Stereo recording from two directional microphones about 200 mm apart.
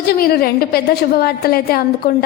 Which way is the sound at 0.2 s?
50° left (ahead or behind).